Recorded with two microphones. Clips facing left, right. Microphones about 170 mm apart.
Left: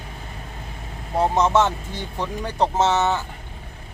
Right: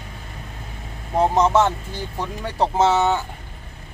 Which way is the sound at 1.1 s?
15° right (ahead or behind).